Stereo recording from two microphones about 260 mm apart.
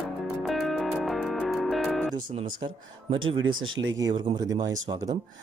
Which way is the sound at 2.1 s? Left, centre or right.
Right.